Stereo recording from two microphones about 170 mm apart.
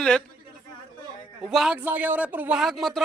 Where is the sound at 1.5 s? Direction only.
Centre (ahead or behind).